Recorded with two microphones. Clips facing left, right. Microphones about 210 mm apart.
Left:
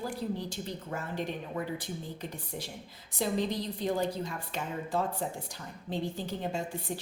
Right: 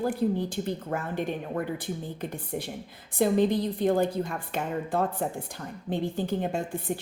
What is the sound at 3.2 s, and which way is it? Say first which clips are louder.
A woman's voice: right 8 dB; 55° right (ahead or behind).